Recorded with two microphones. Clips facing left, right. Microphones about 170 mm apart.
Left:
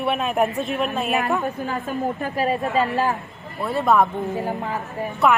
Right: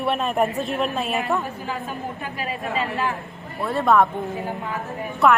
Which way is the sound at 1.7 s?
45° left (ahead or behind).